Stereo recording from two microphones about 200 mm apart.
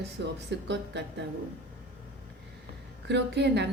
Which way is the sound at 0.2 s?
60° right (ahead or behind).